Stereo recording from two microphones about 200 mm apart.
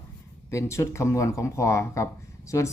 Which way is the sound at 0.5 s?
15° left (ahead or behind).